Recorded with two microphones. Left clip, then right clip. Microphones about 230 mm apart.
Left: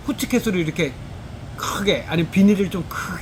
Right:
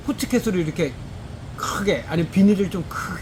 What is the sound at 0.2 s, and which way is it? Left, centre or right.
Speech, centre.